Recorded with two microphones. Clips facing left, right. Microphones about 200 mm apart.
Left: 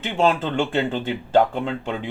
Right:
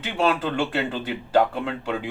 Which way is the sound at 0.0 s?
25° left (ahead or behind).